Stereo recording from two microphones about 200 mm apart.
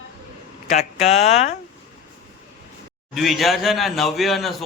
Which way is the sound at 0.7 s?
35° left (ahead or behind).